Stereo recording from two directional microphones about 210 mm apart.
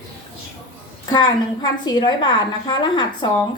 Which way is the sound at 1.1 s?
20° left (ahead or behind).